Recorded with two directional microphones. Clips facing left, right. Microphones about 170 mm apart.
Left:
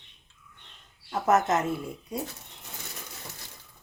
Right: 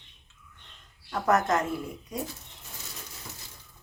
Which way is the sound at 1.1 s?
20° left (ahead or behind).